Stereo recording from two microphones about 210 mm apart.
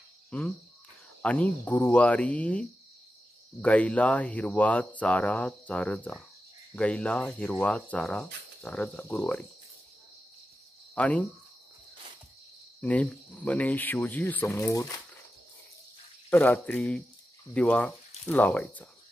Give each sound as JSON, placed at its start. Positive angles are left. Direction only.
{"t": 0.3, "sound": "speech", "side_deg": 5}
{"t": 11.0, "sound": "speech", "side_deg": 5}
{"t": 12.8, "sound": "speech", "side_deg": 5}
{"t": 16.3, "sound": "speech", "side_deg": 10}